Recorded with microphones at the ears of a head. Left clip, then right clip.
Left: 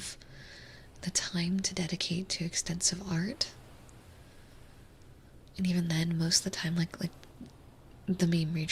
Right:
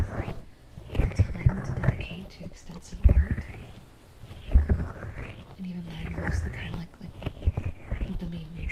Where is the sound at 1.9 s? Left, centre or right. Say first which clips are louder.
Left 6 dB; left.